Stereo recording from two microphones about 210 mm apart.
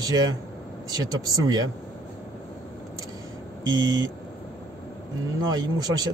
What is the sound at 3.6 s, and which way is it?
Speech, 20° right (ahead or behind).